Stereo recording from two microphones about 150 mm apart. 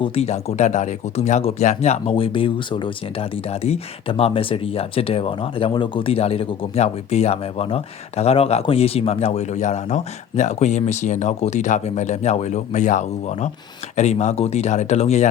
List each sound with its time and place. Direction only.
0.0 s speech: 40° left (ahead or behind)